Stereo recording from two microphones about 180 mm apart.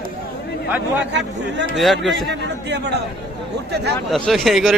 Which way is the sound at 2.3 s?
70° right (ahead or behind).